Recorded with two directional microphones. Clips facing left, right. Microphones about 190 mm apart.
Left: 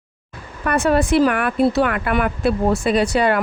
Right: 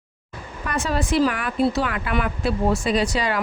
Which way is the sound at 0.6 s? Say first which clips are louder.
Left 8 dB; 60° left (ahead or behind).